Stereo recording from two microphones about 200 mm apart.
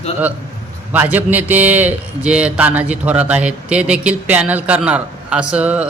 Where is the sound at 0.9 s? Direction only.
10° right (ahead or behind).